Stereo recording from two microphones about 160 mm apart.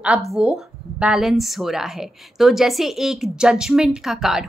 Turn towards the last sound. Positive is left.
turn(degrees=0)  # may be behind; listen again after turning